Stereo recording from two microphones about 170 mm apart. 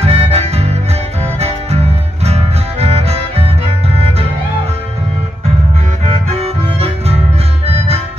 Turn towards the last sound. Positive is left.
turn(degrees=-35)  # may be behind; listen again after turning